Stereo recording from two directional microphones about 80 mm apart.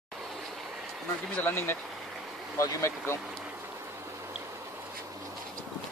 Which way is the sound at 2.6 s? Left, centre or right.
Left.